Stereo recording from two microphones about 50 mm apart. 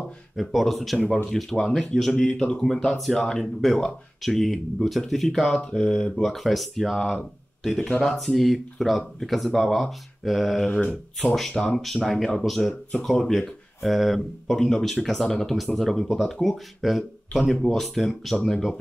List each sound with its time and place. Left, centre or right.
0.4 s speech: centre
6.2 s speech: centre
8.2 s speech: centre